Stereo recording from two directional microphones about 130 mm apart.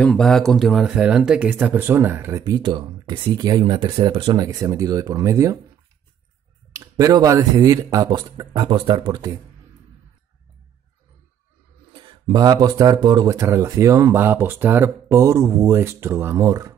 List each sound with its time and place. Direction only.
0.0 s speech: 5° left (ahead or behind); by 2.4 s 20° right (ahead or behind)
2.4 s speech: 35° right (ahead or behind)
6.7 s speech: 25° right (ahead or behind)
11.9 s speech: 35° right (ahead or behind)